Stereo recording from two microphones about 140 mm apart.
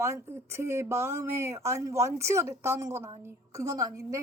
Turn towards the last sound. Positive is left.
turn(degrees=-25)  # may be behind; listen again after turning